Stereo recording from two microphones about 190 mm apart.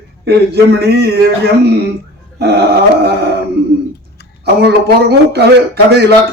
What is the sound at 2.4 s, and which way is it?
Speech, 60° right (ahead or behind).